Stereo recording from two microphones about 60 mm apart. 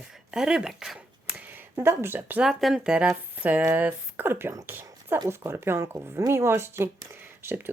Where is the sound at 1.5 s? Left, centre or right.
Right.